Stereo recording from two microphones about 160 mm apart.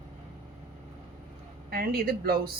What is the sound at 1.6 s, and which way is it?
Speech, 75° right (ahead or behind).